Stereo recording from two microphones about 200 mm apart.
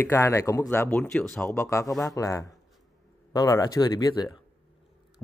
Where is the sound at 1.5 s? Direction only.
15° left (ahead or behind).